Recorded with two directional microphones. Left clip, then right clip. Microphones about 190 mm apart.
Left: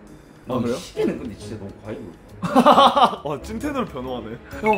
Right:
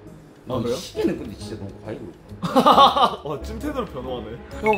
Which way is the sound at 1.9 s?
15° right (ahead or behind).